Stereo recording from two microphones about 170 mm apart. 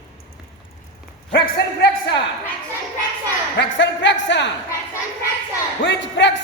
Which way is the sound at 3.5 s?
90° left.